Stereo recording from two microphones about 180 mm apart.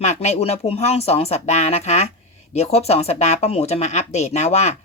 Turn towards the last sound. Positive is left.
turn(degrees=40)  # may be behind; listen again after turning